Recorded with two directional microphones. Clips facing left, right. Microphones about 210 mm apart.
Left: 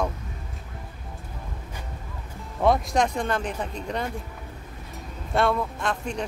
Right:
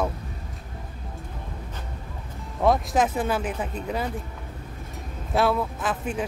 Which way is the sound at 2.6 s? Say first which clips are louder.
Even; centre (ahead or behind).